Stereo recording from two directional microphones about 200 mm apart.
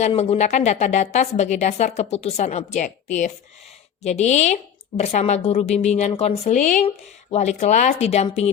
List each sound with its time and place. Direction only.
0.0 s a woman's voice: 30° left (ahead or behind)
4.0 s a woman's voice: 35° left (ahead or behind)